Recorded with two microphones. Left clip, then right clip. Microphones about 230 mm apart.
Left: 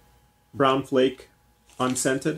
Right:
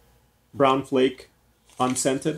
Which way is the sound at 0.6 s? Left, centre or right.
Centre.